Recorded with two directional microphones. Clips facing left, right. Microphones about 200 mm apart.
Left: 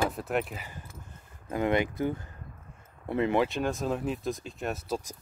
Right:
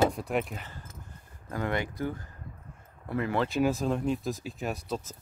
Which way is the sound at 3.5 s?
Centre (ahead or behind).